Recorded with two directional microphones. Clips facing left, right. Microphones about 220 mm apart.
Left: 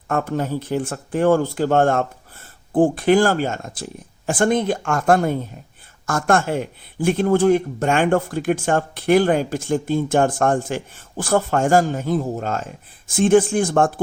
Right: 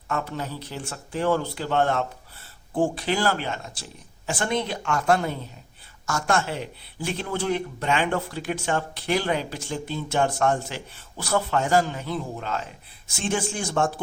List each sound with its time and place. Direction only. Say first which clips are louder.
0.1 s speech: left 8 dB; 50° left (ahead or behind)